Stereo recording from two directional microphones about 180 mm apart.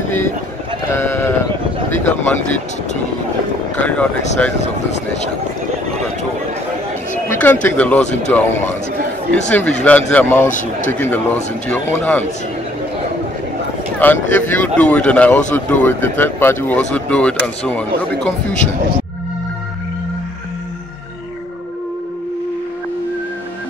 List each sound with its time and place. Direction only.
0.9 s sheep: 15° left (ahead or behind)
2.2 s speech: 10° left (ahead or behind)
3.8 s speech: 5° left (ahead or behind)
7.2 s chatter: 10° left (ahead or behind)
7.6 s speech: 10° left (ahead or behind)
8.0 s speech: 40° left (ahead or behind)
8.3 s speech: 10° left (ahead or behind)
13.9 s speech: 10° left (ahead or behind)